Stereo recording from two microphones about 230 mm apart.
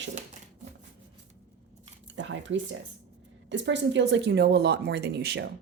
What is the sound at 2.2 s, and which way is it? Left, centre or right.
Speech, right.